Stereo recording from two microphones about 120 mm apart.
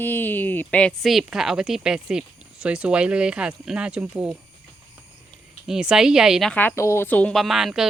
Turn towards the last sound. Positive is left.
turn(degrees=-5)  # may be behind; listen again after turning